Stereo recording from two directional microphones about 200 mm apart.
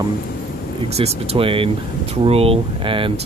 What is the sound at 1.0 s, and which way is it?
Speech, 30° right (ahead or behind).